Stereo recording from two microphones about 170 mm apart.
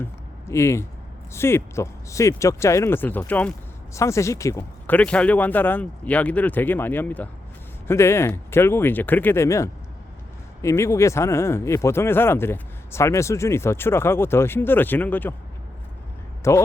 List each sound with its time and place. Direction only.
0.0 s speech: 15° left (ahead or behind)
16.4 s speech: 15° left (ahead or behind)